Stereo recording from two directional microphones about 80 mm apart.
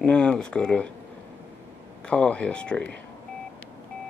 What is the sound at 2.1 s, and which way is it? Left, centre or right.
Speech, centre.